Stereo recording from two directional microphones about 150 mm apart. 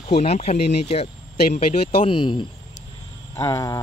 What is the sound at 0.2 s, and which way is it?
Speech, 45° left (ahead or behind).